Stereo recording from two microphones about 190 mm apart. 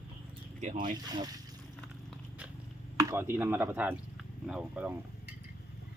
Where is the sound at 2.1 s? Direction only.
10° right (ahead or behind).